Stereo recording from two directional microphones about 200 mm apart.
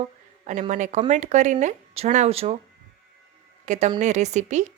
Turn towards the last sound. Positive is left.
turn(degrees=-35)  # may be behind; listen again after turning